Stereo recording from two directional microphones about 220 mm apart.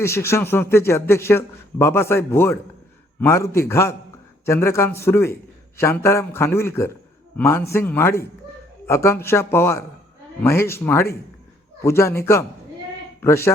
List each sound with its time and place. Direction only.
0.0 s a man's voice: 10° left (ahead or behind)